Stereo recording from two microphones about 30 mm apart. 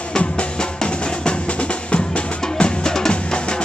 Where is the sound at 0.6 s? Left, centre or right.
Left.